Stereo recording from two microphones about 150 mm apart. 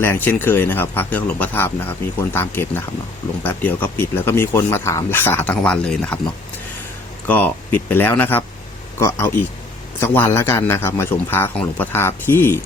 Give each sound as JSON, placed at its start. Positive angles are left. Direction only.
{"t": 0.0, "sound": "speech", "side_deg": 15}
{"t": 7.3, "sound": "speech", "side_deg": 10}